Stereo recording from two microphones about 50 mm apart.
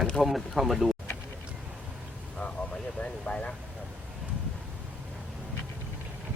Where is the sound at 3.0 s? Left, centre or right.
Left.